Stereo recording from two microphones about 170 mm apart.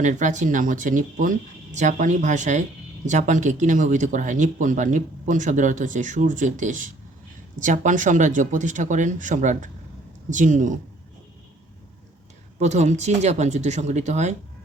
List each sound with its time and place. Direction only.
0.0 s speech: 45° right (ahead or behind)
12.5 s speech: 40° right (ahead or behind)